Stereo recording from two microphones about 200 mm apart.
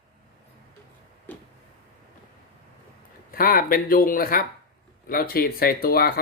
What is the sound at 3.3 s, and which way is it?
Speech, 45° left (ahead or behind).